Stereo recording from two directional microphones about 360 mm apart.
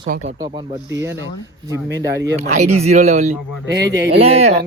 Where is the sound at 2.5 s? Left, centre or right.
Centre.